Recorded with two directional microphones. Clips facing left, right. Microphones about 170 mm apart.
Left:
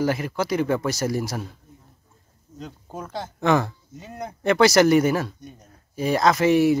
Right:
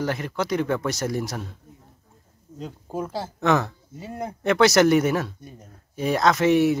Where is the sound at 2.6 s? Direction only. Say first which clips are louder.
Right 5 dB; 5° right (ahead or behind).